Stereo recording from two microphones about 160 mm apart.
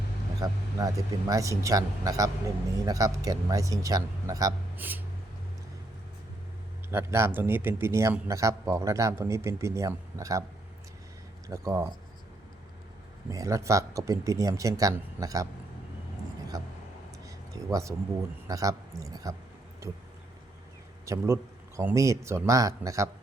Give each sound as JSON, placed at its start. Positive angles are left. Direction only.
{"t": 0.4, "sound": "a man's voice", "side_deg": -20}
{"t": 6.9, "sound": "a man's voice", "side_deg": -15}
{"t": 11.4, "sound": "a man's voice", "side_deg": -20}
{"t": 13.3, "sound": "a man's voice", "side_deg": -20}
{"t": 16.5, "sound": "speech", "side_deg": -20}
{"t": 17.2, "sound": "a sound", "side_deg": -20}
{"t": 18.4, "sound": "a man's voice", "side_deg": -20}
{"t": 21.0, "sound": "a man's voice", "side_deg": -20}